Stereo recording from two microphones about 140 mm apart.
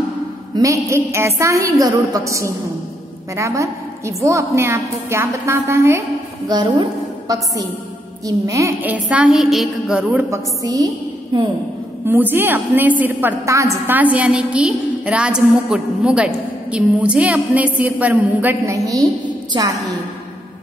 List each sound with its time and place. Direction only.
0.6 s a woman's voice: 20° right (ahead or behind)
6.5 s a woman's voice: 30° right (ahead or behind)
8.9 s a woman's voice: 10° right (ahead or behind)
10.3 s a woman's voice: 25° right (ahead or behind)
12.1 s a woman's voice: 15° right (ahead or behind)